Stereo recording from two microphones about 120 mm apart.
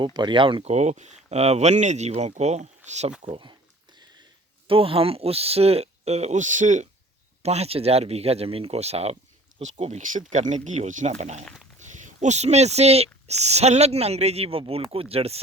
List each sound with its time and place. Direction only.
0.0 s speech: 40° right (ahead or behind)
0.6 s speech: 70° right (ahead or behind)
3.2 s speech: 45° right (ahead or behind)
4.7 s speech: 50° right (ahead or behind); by 6.8 s 90° right
7.4 s speech: 60° right (ahead or behind)
11.4 s speech: 5° left (ahead or behind)
11.8 s speech: 85° right; by 15.4 s 55° right (ahead or behind)